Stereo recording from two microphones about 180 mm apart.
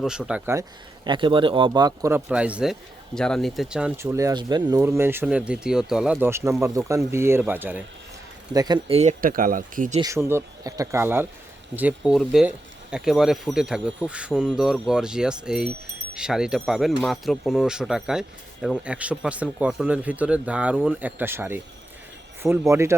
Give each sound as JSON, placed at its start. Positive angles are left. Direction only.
{"t": 0.0, "sound": "speech", "side_deg": -5}
{"t": 1.0, "sound": "speech", "side_deg": -25}
{"t": 8.5, "sound": "speech", "side_deg": -20}
{"t": 9.0, "sound": "speech", "side_deg": -45}
{"t": 10.0, "sound": "speech", "side_deg": -15}